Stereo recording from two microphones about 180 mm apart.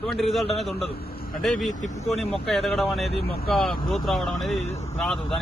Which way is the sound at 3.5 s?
Centre (ahead or behind).